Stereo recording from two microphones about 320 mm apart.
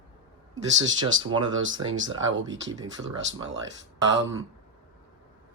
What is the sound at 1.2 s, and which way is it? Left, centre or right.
Speech, centre.